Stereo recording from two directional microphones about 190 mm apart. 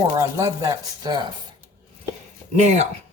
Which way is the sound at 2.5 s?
40° right (ahead or behind).